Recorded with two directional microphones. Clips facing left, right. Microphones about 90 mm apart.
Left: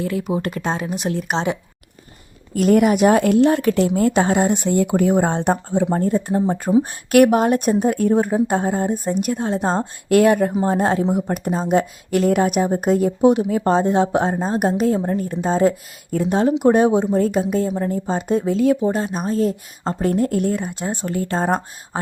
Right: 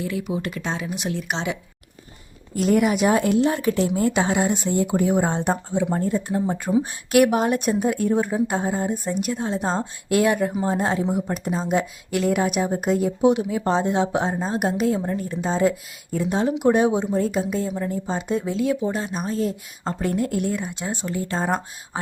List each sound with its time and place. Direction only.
0.0 s speech: 45° left (ahead or behind)
2.6 s a woman's voice: 55° left (ahead or behind)
4.1 s speech: 45° left (ahead or behind)
6.8 s a woman's voice: 50° left (ahead or behind)